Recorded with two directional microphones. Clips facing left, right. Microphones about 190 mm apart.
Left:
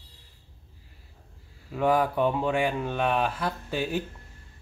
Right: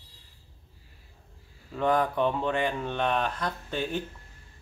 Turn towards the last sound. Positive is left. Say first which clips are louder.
# left 2 dB
turn(degrees=5)  # may be behind; listen again after turning